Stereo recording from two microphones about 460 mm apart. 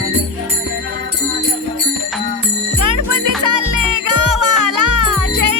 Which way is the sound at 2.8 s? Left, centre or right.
Right.